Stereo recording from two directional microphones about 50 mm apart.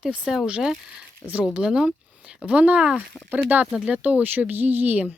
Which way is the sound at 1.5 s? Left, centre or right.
Centre.